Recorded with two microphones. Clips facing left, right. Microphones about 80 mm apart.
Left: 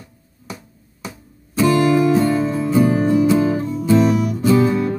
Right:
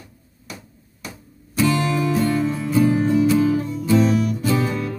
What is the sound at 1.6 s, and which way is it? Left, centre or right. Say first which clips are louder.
Music: left 5 dB; left.